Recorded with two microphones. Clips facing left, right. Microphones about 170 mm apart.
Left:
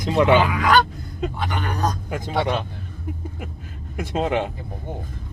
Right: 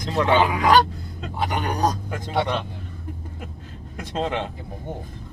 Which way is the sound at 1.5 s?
15° right (ahead or behind).